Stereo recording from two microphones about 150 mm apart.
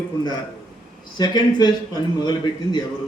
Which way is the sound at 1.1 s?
30° left (ahead or behind).